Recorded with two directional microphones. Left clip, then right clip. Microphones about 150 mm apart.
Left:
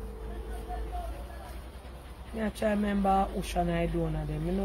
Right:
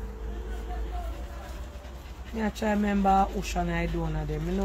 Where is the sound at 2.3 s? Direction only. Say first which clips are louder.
Right 1 dB; 10° left (ahead or behind).